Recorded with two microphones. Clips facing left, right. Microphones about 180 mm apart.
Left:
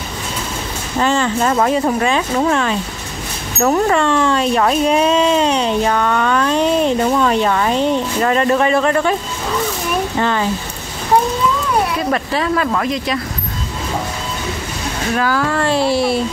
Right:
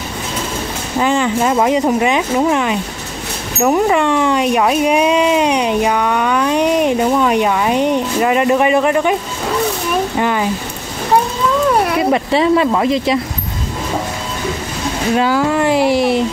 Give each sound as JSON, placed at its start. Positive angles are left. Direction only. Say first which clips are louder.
{"t": 0.9, "sound": "speech", "louder": "right 1 dB", "side_deg": -15}
{"t": 10.1, "sound": "speech", "louder": "right 1 dB", "side_deg": -10}
{"t": 12.0, "sound": "speech", "louder": "right 5 dB", "side_deg": -20}
{"t": 15.1, "sound": "speech", "louder": "right 3 dB", "side_deg": -20}